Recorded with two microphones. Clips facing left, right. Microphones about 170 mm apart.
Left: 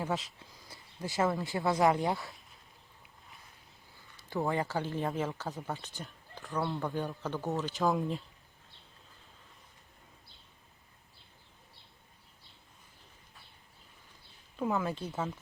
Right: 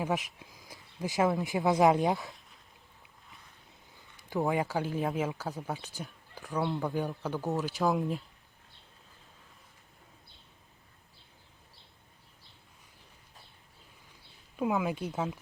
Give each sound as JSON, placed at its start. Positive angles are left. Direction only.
{"t": 0.0, "sound": "speech", "side_deg": -15}
{"t": 3.9, "sound": "a man's voice", "side_deg": -15}
{"t": 6.0, "sound": "a sound", "side_deg": -10}
{"t": 6.6, "sound": "speech", "side_deg": -5}
{"t": 14.5, "sound": "speech", "side_deg": -10}